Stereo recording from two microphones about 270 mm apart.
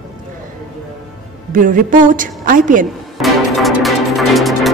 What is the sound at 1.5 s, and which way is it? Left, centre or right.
A woman's voice, right.